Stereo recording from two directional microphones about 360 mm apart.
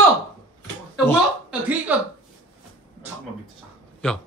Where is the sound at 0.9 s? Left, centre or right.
Centre.